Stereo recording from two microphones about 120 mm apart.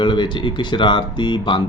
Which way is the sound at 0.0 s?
40° left (ahead or behind).